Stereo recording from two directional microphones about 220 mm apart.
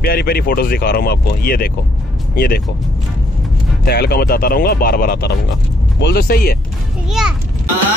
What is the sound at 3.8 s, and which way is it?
Speech, 45° left (ahead or behind).